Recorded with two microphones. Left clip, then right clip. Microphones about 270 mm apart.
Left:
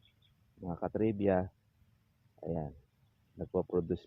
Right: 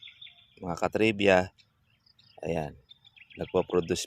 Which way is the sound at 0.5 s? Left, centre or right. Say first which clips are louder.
Right 8 dB; right.